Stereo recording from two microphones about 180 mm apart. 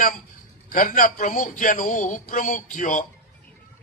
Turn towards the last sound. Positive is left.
turn(degrees=45)  # may be behind; listen again after turning